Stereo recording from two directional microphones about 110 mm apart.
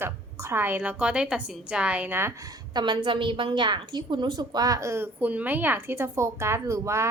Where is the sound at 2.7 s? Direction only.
45° right (ahead or behind).